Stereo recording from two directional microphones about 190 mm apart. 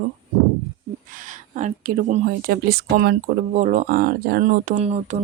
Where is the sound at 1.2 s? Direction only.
40° right (ahead or behind).